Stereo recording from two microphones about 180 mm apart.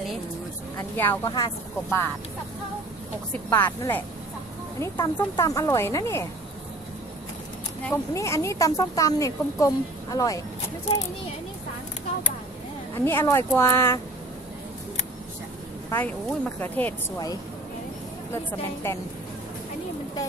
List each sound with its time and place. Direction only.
0.7 s speech: 15° left (ahead or behind)
3.4 s speech: 10° left (ahead or behind)
7.8 s speech: 15° left (ahead or behind)
13.0 s speech: 10° left (ahead or behind)
15.9 s speech: 5° left (ahead or behind)
18.3 s speech: 15° left (ahead or behind)